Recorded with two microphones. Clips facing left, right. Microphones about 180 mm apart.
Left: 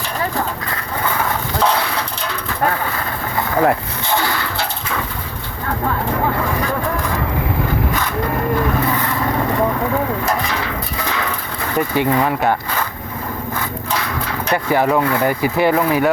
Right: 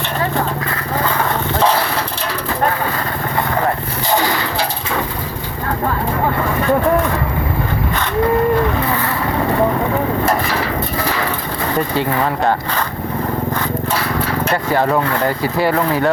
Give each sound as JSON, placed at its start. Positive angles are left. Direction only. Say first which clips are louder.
{"t": 4.1, "sound": "a sound", "louder": "right 3 dB", "side_deg": -15}
{"t": 11.9, "sound": "speech", "louder": "left 1 dB", "side_deg": 15}
{"t": 14.5, "sound": "speech", "louder": "left 1 dB", "side_deg": 15}